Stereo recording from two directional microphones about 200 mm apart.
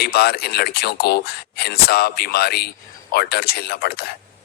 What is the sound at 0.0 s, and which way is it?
A man's voice, 50° left (ahead or behind).